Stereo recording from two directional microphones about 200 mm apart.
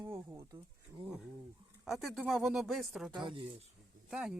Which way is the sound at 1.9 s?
Centre (ahead or behind).